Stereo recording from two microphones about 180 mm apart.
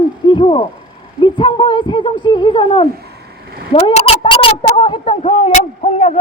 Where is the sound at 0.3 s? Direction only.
25° left (ahead or behind).